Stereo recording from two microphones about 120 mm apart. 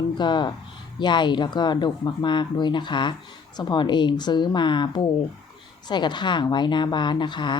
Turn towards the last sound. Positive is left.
turn(degrees=40)  # may be behind; listen again after turning